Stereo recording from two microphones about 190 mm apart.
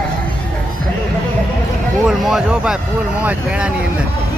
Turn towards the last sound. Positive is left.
turn(degrees=-5)  # may be behind; listen again after turning